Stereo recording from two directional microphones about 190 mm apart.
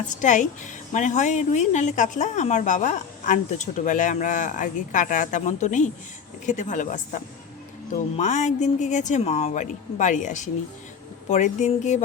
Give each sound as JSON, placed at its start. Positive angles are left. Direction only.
{"t": 0.2, "sound": "speech", "side_deg": 40}